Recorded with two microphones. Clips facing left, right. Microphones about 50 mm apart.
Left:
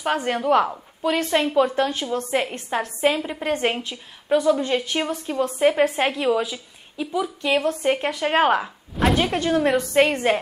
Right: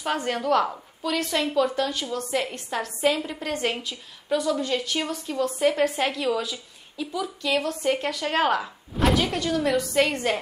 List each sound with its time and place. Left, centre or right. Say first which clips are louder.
0.0 s a woman's voice: left 3 dB; centre